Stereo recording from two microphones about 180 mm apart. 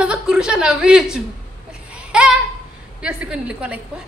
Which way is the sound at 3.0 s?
5° right (ahead or behind).